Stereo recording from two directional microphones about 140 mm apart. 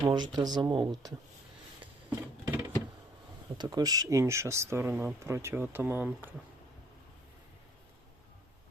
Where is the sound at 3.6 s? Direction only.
30° right (ahead or behind); by 6.3 s 15° right (ahead or behind).